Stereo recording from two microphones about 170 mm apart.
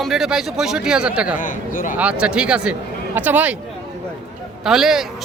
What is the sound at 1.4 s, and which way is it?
Speech, 50° left (ahead or behind).